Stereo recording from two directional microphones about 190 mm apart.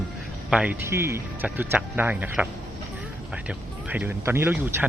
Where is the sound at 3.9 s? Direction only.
10° right (ahead or behind).